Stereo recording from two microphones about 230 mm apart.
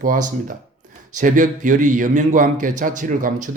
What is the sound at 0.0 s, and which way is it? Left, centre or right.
A man's voice, right.